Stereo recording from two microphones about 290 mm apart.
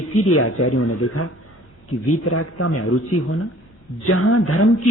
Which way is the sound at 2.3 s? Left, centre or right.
Left.